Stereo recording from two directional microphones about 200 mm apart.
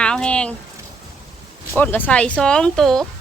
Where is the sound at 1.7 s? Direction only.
10° left (ahead or behind).